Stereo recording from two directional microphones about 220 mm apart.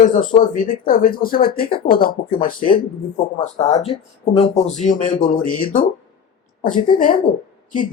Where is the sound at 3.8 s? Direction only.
30° left (ahead or behind).